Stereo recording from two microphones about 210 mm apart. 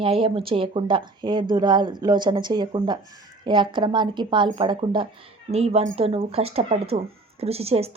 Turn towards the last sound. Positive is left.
turn(degrees=-30)  # may be behind; listen again after turning